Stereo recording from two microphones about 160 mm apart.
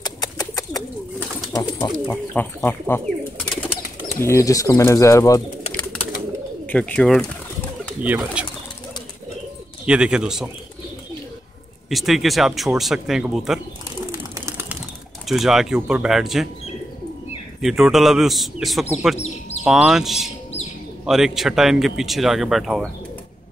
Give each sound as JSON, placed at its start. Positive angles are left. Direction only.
{"t": 0.0, "sound": "bird", "side_deg": 25}
{"t": 1.5, "sound": "speech", "side_deg": 20}
{"t": 4.2, "sound": "speech", "side_deg": 20}
{"t": 6.6, "sound": "speech", "side_deg": 10}
{"t": 8.0, "sound": "speech", "side_deg": -10}
{"t": 9.8, "sound": "speech", "side_deg": -5}
{"t": 11.9, "sound": "speech", "side_deg": 0}
{"t": 14.3, "sound": "bird", "side_deg": -15}
{"t": 15.2, "sound": "speech", "side_deg": 0}
{"t": 17.6, "sound": "speech", "side_deg": 0}
{"t": 19.1, "sound": "bird", "side_deg": 45}
{"t": 19.6, "sound": "speech", "side_deg": -5}